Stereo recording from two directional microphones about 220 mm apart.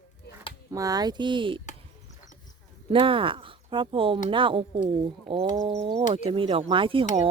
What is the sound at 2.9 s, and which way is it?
Speech, 25° right (ahead or behind).